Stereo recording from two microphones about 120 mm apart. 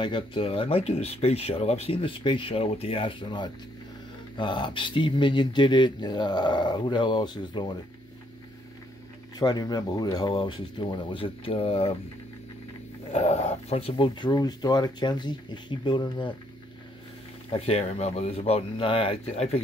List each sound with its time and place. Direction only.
0.0 s speech: 45° left (ahead or behind)
9.4 s speech: 35° left (ahead or behind); by 11.9 s 50° left (ahead or behind)
13.1 s speech: 65° left (ahead or behind); by 16.3 s 40° left (ahead or behind)
17.5 s speech: 55° left (ahead or behind)